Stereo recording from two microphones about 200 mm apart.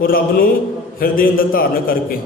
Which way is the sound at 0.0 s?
45° left (ahead or behind).